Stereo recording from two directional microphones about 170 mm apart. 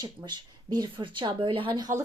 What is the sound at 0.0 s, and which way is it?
Speech, 25° right (ahead or behind).